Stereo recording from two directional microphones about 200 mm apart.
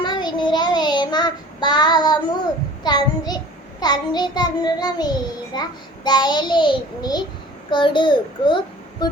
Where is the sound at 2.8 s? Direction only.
20° left (ahead or behind).